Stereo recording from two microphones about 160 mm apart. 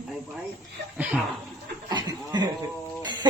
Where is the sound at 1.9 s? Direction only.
25° right (ahead or behind).